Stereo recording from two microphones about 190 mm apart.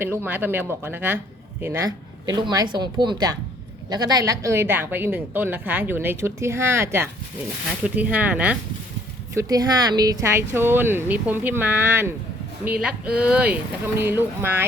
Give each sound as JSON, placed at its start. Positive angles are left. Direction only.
{"t": 0.3, "sound": "a woman's voice", "side_deg": -10}
{"t": 9.3, "sound": "a woman's voice", "side_deg": -15}